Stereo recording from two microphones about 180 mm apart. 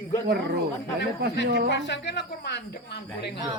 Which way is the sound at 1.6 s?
75° left (ahead or behind).